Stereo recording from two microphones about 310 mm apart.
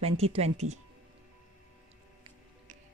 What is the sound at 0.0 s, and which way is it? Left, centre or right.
Speech, centre.